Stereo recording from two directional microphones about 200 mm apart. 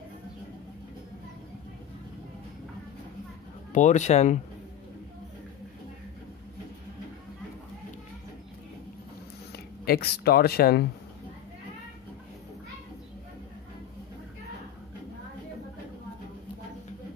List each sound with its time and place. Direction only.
3.7 s speech: 35° left (ahead or behind)
9.8 s speech: 50° left (ahead or behind)